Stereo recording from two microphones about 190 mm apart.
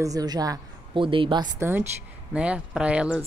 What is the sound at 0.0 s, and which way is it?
A woman's voice, 20° right (ahead or behind).